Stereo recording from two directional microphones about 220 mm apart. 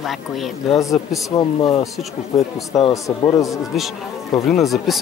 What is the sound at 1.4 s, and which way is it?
A man's voice, 15° left (ahead or behind).